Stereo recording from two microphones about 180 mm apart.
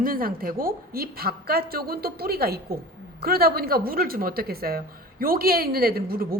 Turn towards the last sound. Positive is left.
turn(degrees=-55)  # may be behind; listen again after turning